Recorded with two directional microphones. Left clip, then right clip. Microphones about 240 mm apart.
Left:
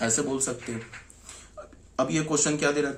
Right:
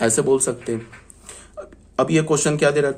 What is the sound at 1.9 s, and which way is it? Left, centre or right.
Speech, right.